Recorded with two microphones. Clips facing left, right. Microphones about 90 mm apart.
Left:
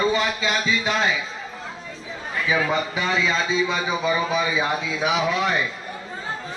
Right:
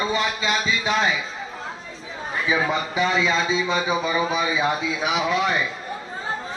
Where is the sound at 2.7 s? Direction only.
5° right (ahead or behind).